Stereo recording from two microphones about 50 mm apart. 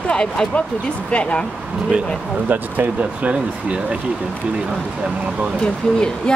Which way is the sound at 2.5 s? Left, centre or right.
Right.